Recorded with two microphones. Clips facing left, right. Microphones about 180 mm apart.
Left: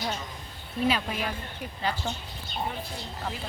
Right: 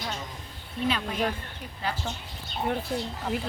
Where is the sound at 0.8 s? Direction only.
10° left (ahead or behind).